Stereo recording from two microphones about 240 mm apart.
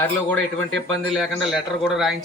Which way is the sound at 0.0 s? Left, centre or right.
Centre.